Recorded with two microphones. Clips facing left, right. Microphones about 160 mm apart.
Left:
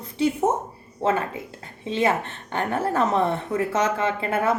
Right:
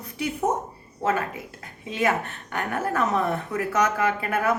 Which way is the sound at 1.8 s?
30° left (ahead or behind).